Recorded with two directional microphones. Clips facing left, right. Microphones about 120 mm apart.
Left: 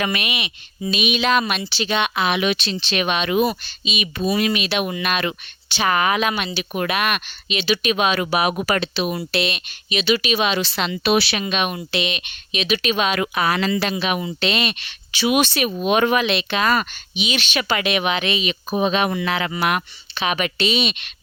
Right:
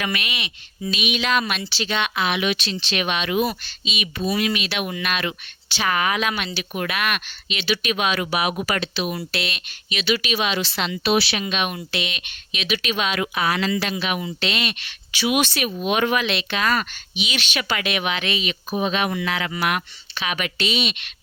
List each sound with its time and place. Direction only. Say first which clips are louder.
0.0 s speech: left 3 dB; 25° left (ahead or behind)
3.6 s speech: left 3 dB; 20° left (ahead or behind)
4.3 s speech: left 3 dB; 30° left (ahead or behind)
5.6 s speech: left 3 dB; 20° left (ahead or behind)
5.9 s speech: left 3 dB; 35° left (ahead or behind)
9.1 s speech: left 5 dB; 25° left (ahead or behind)
10.5 s a woman's voice: left 2 dB; 45° left (ahead or behind)
11.0 s speech: left 2 dB; 60° left (ahead or behind)
11.4 s speech: left 2 dB; 40° left (ahead or behind)
11.9 s speech: left 4 dB; 25° left (ahead or behind); by 13.7 s 45° left (ahead or behind)
13.7 s speech: left 3 dB; 30° left (ahead or behind)
16.2 s speech: left 3 dB; 20° left (ahead or behind)